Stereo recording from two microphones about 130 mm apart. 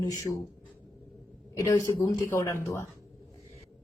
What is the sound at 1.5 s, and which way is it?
A woman's voice, 30° left (ahead or behind).